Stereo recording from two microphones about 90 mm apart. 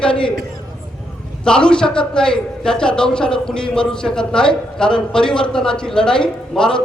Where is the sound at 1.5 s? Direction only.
10° left (ahead or behind).